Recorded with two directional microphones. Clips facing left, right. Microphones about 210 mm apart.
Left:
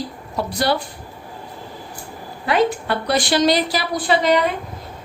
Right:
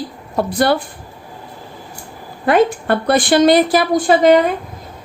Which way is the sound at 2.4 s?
50° right (ahead or behind).